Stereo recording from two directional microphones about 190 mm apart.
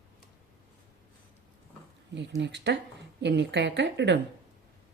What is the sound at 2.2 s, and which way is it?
A woman's voice, 65° right (ahead or behind).